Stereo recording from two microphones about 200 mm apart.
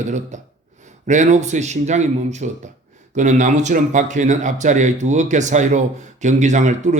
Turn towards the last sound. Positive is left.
turn(degrees=-35)  # may be behind; listen again after turning